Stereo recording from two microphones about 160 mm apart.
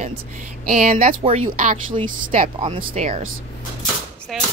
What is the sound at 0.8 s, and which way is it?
Speech, 55° right (ahead or behind).